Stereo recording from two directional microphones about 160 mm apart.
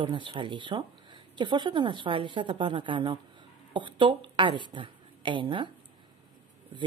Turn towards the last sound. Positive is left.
turn(degrees=-30)  # may be behind; listen again after turning